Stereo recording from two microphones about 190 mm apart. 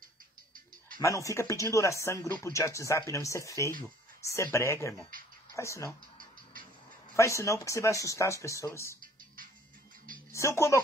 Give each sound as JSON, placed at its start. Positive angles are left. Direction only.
{"t": 0.9, "sound": "speech", "side_deg": 15}
{"t": 7.2, "sound": "speech", "side_deg": 15}
{"t": 10.1, "sound": "a sound", "side_deg": 15}